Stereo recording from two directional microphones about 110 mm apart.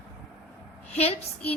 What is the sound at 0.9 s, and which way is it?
Speech, 70° left (ahead or behind).